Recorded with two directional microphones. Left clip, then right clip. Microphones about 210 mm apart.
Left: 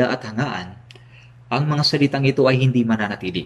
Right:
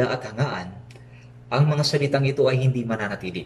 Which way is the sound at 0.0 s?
30° left (ahead or behind).